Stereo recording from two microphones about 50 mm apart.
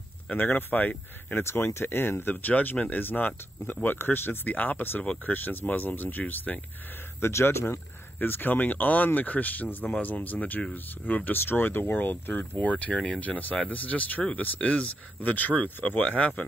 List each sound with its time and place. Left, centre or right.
0.3 s speech: left
1.4 s speech: left
2.3 s speech: left
7.2 s speech: left
8.2 s speech: left
11.3 s speech: left
12.5 s speech: left